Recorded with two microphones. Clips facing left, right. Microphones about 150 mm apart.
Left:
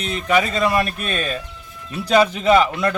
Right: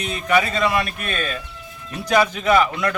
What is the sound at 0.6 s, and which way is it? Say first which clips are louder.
Speech: left 2 dB; 40° left (ahead or behind).